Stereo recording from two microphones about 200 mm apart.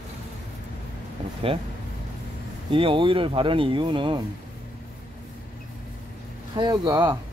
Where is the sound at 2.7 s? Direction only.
25° right (ahead or behind).